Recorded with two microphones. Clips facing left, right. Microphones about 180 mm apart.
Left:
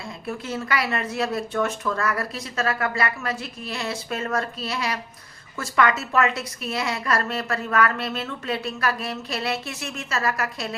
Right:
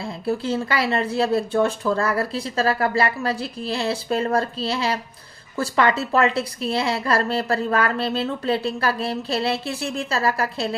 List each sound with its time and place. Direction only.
0.0 s a woman's voice: 30° right (ahead or behind)